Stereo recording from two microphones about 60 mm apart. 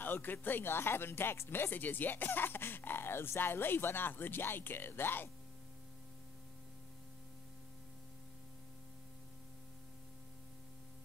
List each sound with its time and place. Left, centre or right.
0.0 s speech: left